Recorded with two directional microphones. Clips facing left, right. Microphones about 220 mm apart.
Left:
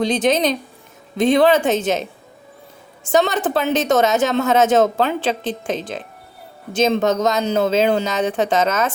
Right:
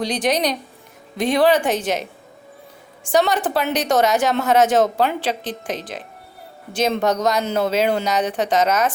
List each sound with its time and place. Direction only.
0.0 s speech: 25° left (ahead or behind)
3.1 s speech: 25° left (ahead or behind)
7.0 s speech: 25° left (ahead or behind)